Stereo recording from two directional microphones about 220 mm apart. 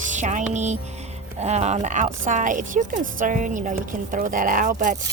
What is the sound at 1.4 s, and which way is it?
A woman's voice, 30° right (ahead or behind).